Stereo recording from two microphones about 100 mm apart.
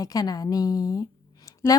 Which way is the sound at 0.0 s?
40° left (ahead or behind).